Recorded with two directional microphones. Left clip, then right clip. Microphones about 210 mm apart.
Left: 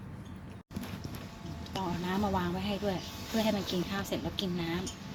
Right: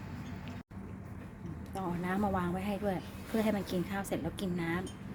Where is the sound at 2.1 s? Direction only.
20° right (ahead or behind).